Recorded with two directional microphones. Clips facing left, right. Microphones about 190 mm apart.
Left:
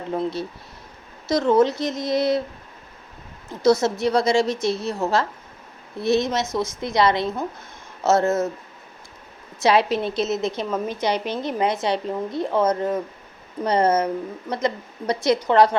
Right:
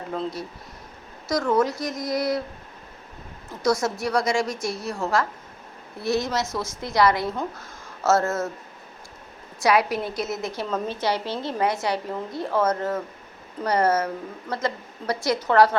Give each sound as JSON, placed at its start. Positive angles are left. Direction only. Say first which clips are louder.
{"t": 0.1, "sound": "speech", "louder": "left 5 dB", "side_deg": 25}
{"t": 3.6, "sound": "speech", "louder": "left 5 dB", "side_deg": 25}
{"t": 9.6, "sound": "speech", "louder": "left 2 dB", "side_deg": 25}